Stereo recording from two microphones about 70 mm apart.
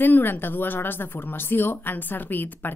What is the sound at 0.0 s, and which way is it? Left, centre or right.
A woman's voice, left.